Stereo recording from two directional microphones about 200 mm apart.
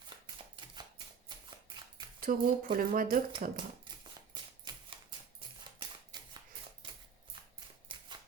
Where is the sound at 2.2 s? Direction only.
45° right (ahead or behind).